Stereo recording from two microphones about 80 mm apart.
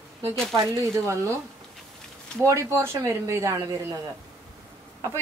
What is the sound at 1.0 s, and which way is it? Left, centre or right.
Speech, right.